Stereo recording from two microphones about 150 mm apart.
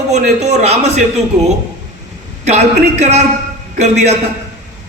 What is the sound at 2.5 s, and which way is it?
A man's voice, 50° right (ahead or behind).